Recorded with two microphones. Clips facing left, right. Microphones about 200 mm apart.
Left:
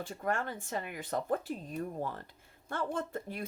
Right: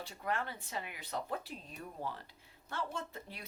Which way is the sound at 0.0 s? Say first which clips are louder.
Left 4 dB; 50° left (ahead or behind).